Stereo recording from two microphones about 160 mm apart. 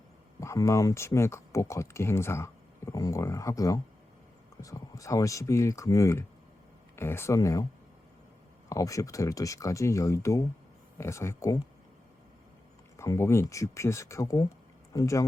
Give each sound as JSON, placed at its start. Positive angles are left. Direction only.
{"t": 0.3, "sound": "speech", "side_deg": 20}
{"t": 8.7, "sound": "speech", "side_deg": 20}
{"t": 13.0, "sound": "speech", "side_deg": 15}